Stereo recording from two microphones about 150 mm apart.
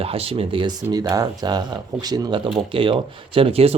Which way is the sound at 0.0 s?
40° right (ahead or behind).